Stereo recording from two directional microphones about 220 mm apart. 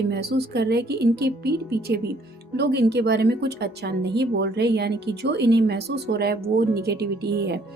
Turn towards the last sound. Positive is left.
turn(degrees=-50)  # may be behind; listen again after turning